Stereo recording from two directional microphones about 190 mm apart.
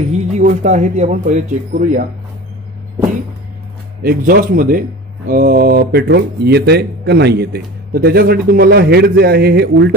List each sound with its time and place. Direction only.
0.1 s speech: 40° right (ahead or behind)
4.0 s speech: 55° right (ahead or behind)